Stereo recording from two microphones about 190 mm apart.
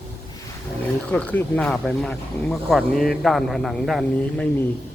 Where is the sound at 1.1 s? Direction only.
5° left (ahead or behind).